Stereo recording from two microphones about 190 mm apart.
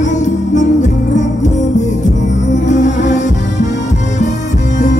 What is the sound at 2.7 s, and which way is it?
Music, 40° left (ahead or behind).